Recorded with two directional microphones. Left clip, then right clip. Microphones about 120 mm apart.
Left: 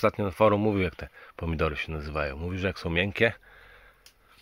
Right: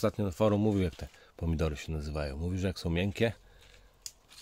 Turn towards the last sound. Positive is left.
turn(degrees=-10)  # may be behind; listen again after turning